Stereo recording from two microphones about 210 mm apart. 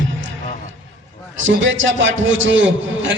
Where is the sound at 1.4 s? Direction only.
65° right (ahead or behind).